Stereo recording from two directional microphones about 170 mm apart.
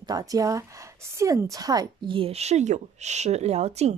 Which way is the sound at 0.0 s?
20° right (ahead or behind).